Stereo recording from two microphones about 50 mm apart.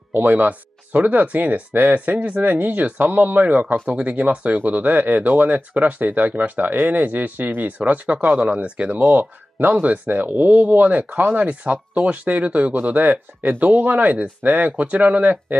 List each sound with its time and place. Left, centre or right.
0.1 s speech: right
4.6 s speech: right
8.9 s speech: right
12.7 s speech: right